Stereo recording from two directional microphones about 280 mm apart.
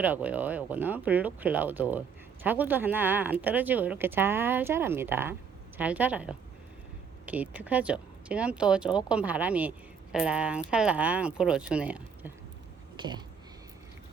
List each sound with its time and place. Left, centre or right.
0.0 s speech: centre
13.0 s speech: centre